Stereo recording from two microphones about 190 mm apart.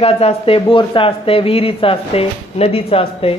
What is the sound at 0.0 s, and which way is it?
A woman's voice, 30° left (ahead or behind).